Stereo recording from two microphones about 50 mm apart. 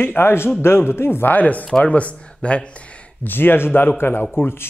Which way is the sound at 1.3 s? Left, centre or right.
Left.